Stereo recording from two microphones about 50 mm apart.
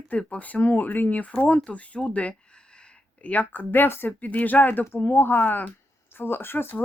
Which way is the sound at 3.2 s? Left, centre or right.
Left.